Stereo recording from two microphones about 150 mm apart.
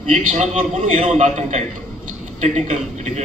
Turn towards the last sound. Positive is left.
turn(degrees=-50)  # may be behind; listen again after turning